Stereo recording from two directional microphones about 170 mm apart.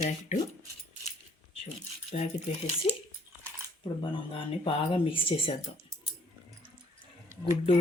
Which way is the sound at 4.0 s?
30° left (ahead or behind).